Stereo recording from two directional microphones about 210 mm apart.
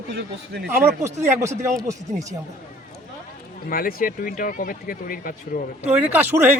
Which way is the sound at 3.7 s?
45° left (ahead or behind).